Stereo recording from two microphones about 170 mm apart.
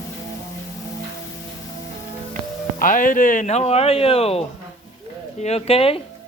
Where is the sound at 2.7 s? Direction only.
50° left (ahead or behind); by 6.0 s 35° left (ahead or behind).